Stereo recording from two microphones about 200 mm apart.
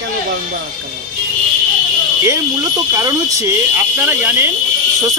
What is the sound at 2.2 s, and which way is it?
A man's voice, 15° right (ahead or behind).